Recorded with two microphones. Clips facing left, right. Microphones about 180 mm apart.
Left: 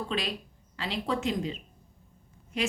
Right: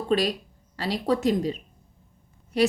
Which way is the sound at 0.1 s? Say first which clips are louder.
Right 9 dB; 40° right (ahead or behind).